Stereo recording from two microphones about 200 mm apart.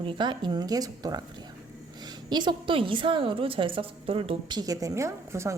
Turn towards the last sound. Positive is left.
turn(degrees=-15)  # may be behind; listen again after turning